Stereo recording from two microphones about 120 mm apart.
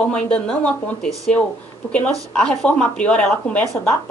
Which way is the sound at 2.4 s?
5° left (ahead or behind).